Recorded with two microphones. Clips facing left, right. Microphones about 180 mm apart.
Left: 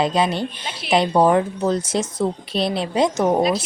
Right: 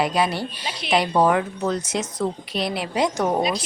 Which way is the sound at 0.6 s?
5° left (ahead or behind).